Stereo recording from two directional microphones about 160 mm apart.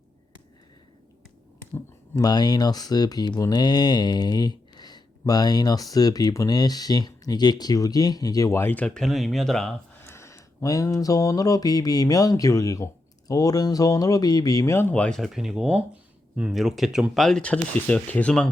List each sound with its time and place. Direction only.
1.7 s speech: 20° left (ahead or behind); by 9.7 s 5° left (ahead or behind)
10.0 s speech: 15° left (ahead or behind)